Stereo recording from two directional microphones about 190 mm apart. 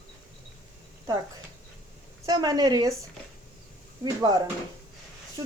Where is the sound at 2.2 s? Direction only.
20° right (ahead or behind).